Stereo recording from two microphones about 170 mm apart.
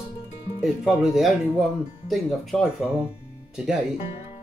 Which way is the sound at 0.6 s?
Centre (ahead or behind).